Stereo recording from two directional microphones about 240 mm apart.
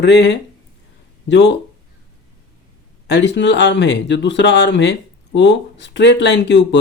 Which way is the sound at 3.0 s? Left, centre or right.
Left.